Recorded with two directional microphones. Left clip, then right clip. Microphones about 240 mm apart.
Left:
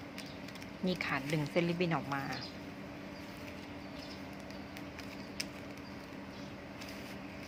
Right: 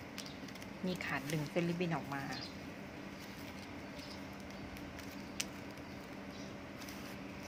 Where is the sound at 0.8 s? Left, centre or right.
Centre.